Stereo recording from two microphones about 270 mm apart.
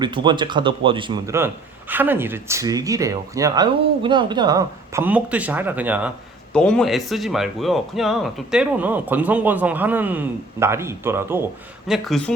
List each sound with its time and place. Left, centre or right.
0.0 s speech: centre